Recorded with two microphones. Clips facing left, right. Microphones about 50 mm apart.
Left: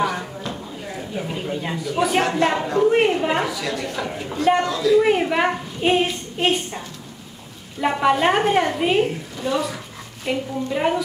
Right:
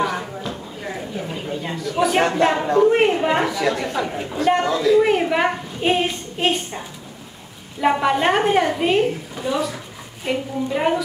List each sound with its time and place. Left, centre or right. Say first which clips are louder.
0.0 s a sound: even; centre
1.1 s a woman's voice: left 1 dB; centre; by 4.0 s right
4.3 s a woman's voice: left 1 dB; centre
4.6 s a woman's voice: right 1 dB; centre
5.0 s a woman's voice: even; centre
7.8 s a woman's voice: even; centre